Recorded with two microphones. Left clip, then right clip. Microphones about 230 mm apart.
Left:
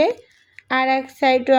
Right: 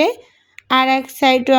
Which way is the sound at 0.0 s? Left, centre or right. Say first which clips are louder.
Right 2 dB; right.